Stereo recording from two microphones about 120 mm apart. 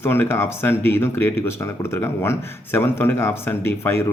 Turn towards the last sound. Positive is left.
turn(degrees=20)  # may be behind; listen again after turning